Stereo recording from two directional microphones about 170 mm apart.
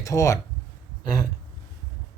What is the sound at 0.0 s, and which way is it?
Speech, 20° left (ahead or behind).